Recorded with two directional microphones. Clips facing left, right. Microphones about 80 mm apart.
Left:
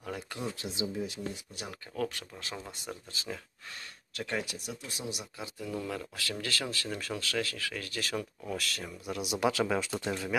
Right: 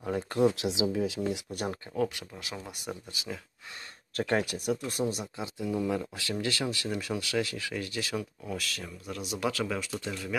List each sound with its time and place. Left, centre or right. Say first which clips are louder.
0.4 s speech: right 13 dB; right
1.6 s speech: right 9 dB; right
2.0 s speech: right 3 dB; centre
2.3 s speech: right 1 dB; centre
2.7 s speech: right 3 dB; centre
4.1 s speech: right 7 dB; right
5.6 s speech: right 6 dB; centre
8.8 s speech: left 2 dB; centre; by 10.3 s left